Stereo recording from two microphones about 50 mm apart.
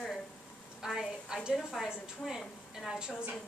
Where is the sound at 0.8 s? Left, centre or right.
Centre.